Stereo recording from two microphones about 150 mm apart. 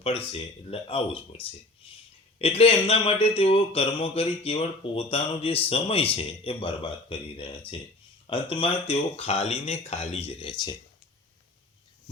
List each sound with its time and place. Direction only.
0.0 s speech: 40° left (ahead or behind)